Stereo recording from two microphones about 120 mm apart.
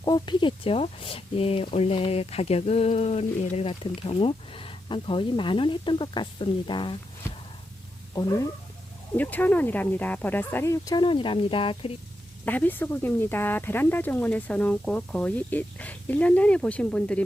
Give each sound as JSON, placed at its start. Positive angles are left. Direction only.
{"t": 0.0, "sound": "speech", "side_deg": 35}
{"t": 3.7, "sound": "speech", "side_deg": 50}
{"t": 8.1, "sound": "speech", "side_deg": 30}
{"t": 9.1, "sound": "speech", "side_deg": 15}
{"t": 12.5, "sound": "speech", "side_deg": 15}